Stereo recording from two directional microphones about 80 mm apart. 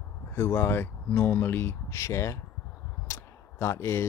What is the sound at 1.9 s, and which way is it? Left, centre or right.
Speech, left.